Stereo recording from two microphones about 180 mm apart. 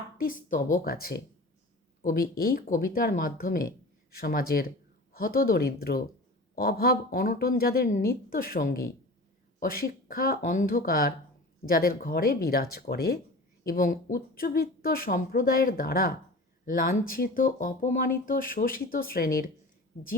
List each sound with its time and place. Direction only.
0.2 s speech: 50° left (ahead or behind)
13.7 s speech: 50° left (ahead or behind)